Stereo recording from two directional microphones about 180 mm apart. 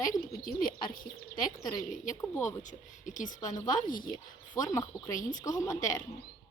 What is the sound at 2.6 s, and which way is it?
Speech, 45° left (ahead or behind).